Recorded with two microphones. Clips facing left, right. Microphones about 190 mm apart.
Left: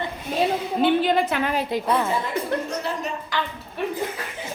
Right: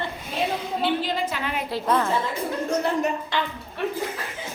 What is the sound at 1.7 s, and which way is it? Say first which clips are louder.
Speech: left 1 dB; 15° left (ahead or behind).